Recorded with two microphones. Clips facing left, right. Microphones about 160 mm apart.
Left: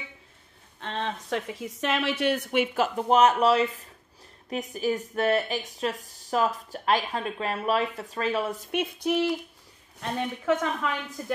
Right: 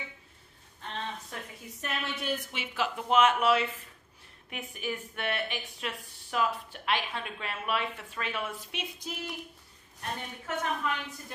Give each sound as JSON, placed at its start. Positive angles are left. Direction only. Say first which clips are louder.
{"t": 0.7, "sound": "a woman's voice", "louder": "left 6 dB", "side_deg": 90}
{"t": 8.7, "sound": "speech", "louder": "left 14 dB", "side_deg": 70}
{"t": 10.1, "sound": "a woman's voice", "louder": "left 11 dB", "side_deg": 90}